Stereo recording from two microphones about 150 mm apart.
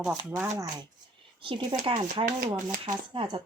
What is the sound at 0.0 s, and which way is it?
Speech, 10° right (ahead or behind).